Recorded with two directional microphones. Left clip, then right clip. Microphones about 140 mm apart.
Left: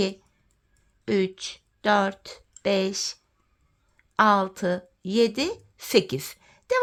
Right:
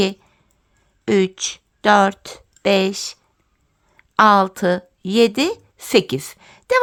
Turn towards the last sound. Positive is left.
turn(degrees=-35)  # may be behind; listen again after turning